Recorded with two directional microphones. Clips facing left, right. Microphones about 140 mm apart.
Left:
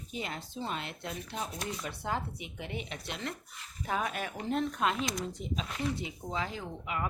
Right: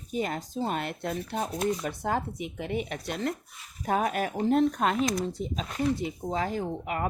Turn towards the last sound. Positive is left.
turn(degrees=-45)  # may be behind; listen again after turning